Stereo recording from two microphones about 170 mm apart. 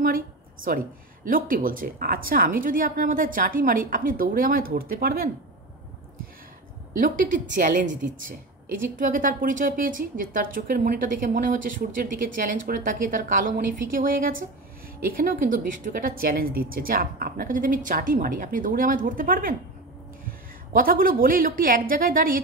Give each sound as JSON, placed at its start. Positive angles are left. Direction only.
{"t": 0.7, "sound": "a woman's voice", "side_deg": -55}
{"t": 7.0, "sound": "a woman's voice", "side_deg": -50}